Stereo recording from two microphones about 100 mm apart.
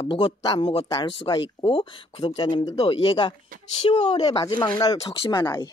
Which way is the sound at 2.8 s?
70° left (ahead or behind).